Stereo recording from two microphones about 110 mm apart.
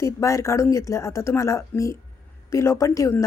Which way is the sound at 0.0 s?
30° left (ahead or behind).